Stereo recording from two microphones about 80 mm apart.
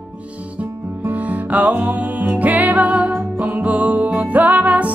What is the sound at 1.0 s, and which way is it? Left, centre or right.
Music, centre.